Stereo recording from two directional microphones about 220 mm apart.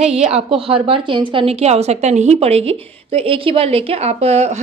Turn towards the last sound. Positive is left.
turn(degrees=-30)  # may be behind; listen again after turning